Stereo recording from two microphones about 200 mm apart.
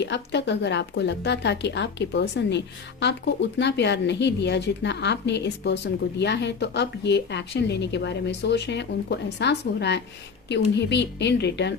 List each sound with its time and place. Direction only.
0.0 s speech: 60° left (ahead or behind)